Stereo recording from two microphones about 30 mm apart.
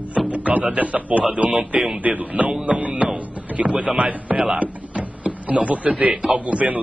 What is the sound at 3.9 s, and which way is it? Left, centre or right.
Speech, right.